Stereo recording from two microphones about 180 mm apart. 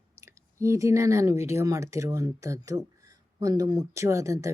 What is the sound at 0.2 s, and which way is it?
Speech, 15° right (ahead or behind).